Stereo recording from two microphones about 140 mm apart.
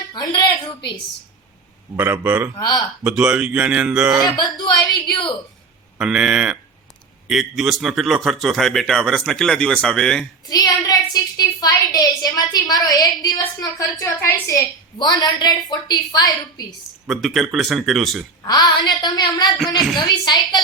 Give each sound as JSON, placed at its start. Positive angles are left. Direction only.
{"t": 0.3, "sound": "a woman's voice", "side_deg": 35}
{"t": 2.0, "sound": "speech", "side_deg": -10}
{"t": 2.6, "sound": "a woman's voice", "side_deg": 30}
{"t": 3.0, "sound": "speech", "side_deg": -5}
{"t": 4.4, "sound": "a woman's voice", "side_deg": 30}
{"t": 6.0, "sound": "a man's voice", "side_deg": -5}
{"t": 10.5, "sound": "a woman's voice", "side_deg": 25}
{"t": 17.1, "sound": "a man's voice", "side_deg": 0}
{"t": 18.4, "sound": "a woman's voice", "side_deg": 30}